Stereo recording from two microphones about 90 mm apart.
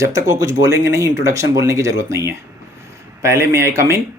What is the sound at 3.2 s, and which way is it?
Speech, 30° right (ahead or behind).